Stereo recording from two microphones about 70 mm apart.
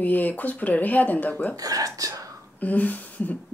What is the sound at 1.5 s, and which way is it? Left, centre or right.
Speech, right.